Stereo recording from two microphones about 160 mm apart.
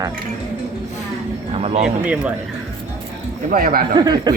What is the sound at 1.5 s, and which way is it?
Speech, 40° right (ahead or behind).